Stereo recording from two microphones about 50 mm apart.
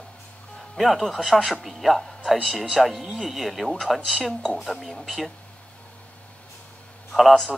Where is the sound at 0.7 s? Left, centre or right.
Centre.